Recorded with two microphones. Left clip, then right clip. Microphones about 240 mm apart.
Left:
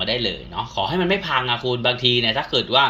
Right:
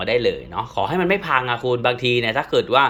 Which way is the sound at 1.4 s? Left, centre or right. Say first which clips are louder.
Right 1 dB; right.